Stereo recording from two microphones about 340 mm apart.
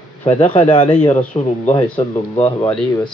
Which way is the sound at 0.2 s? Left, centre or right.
Centre.